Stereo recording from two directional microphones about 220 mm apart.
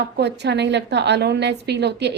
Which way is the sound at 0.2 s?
50° right (ahead or behind).